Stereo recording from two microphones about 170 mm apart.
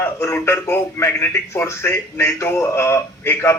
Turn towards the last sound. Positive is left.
turn(degrees=15)  # may be behind; listen again after turning